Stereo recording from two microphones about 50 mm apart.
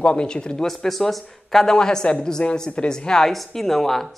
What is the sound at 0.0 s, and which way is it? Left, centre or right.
Speech, centre.